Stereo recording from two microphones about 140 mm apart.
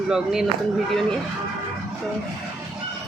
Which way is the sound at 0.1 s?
5° right (ahead or behind).